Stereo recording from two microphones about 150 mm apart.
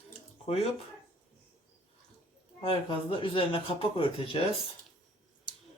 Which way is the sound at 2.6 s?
35° left (ahead or behind).